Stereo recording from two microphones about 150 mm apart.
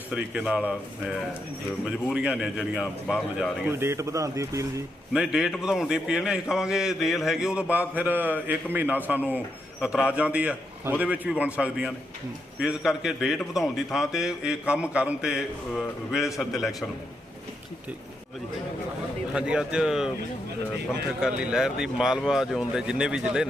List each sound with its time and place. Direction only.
0.1 s a man's voice: 5° right (ahead or behind)
3.7 s speech: 15° right (ahead or behind)
5.1 s a man's voice: 5° right (ahead or behind)
19.3 s a man's voice: 5° right (ahead or behind)
21.2 s a man's voice: 5° right (ahead or behind)